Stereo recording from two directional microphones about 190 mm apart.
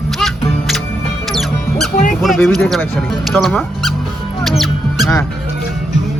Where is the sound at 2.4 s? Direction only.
Centre (ahead or behind).